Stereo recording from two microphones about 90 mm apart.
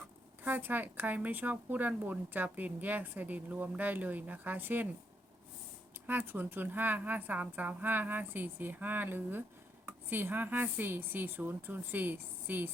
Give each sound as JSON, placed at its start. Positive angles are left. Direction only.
{"t": 0.4, "sound": "speech", "side_deg": -20}
{"t": 6.1, "sound": "speech", "side_deg": -20}